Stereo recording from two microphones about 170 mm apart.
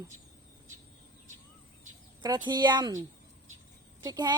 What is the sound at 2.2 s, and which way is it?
Speech, 25° right (ahead or behind).